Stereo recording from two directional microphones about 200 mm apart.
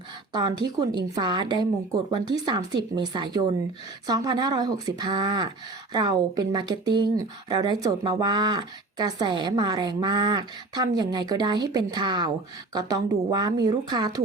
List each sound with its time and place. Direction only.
0.3 s speech: 20° right (ahead or behind)